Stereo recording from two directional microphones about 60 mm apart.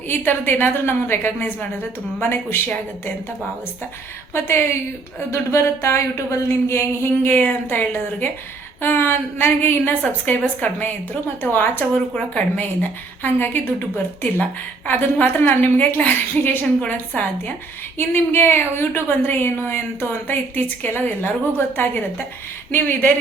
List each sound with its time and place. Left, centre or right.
0.1 s speech: left
4.4 s a woman's voice: left
12.3 s a woman's voice: left
12.6 s speech: left